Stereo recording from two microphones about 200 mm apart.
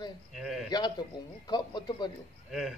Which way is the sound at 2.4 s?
Centre (ahead or behind).